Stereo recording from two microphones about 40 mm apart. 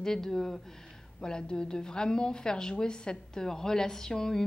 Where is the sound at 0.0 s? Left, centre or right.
Centre.